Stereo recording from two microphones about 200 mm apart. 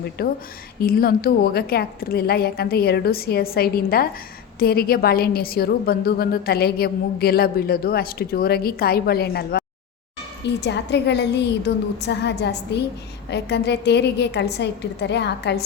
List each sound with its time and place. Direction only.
0.2 s a woman's voice: 50° left (ahead or behind)